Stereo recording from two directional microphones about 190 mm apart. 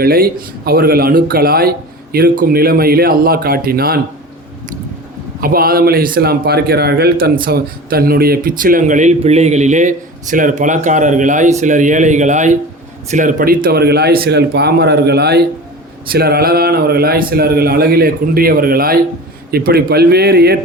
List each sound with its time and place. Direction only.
0.0 s a man's voice: 50° right (ahead or behind)
5.4 s a man's voice: 50° right (ahead or behind)